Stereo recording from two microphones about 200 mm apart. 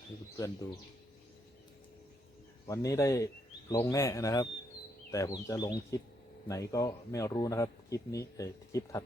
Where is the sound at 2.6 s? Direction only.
15° left (ahead or behind).